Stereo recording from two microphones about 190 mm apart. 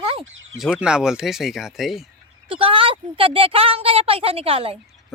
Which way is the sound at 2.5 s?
30° right (ahead or behind).